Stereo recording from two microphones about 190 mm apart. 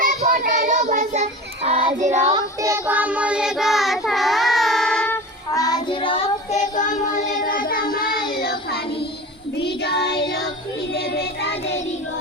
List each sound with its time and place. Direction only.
0.0 s child singing: 45° right (ahead or behind)
2.3 s child singing: 15° right (ahead or behind); by 7.0 s 40° left (ahead or behind)
7.4 s music: 50° left (ahead or behind)
7.9 s child singing: 50° left (ahead or behind)